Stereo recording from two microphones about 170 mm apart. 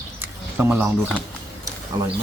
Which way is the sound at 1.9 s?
20° right (ahead or behind).